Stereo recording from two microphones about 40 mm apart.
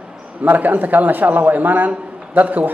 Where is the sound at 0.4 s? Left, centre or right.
Right.